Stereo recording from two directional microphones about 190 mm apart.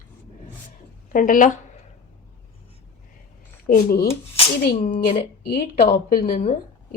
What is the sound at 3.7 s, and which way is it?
Speech, 55° left (ahead or behind).